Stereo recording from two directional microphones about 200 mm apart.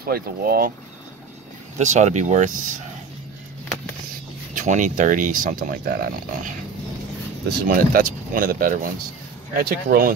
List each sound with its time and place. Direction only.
0.0 s speech: 50° right (ahead or behind)
1.8 s speech: 35° right (ahead or behind)
4.6 s speech: 40° right (ahead or behind)